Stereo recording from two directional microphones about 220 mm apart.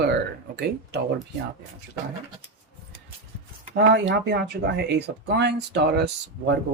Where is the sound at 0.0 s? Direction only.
50° right (ahead or behind).